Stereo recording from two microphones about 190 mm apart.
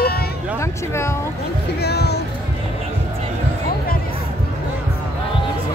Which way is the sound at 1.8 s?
60° left (ahead or behind).